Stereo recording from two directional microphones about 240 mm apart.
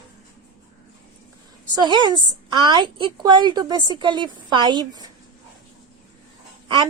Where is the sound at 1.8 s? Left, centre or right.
Centre.